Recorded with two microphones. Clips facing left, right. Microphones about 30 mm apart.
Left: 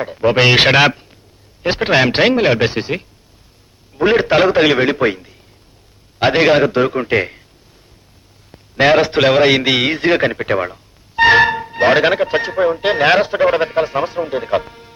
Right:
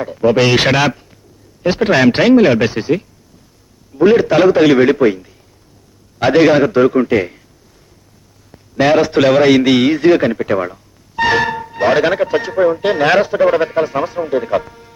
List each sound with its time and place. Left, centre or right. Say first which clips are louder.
0.0 s a man's voice: right 1 dB; left
8.5 s a man's voice: even; left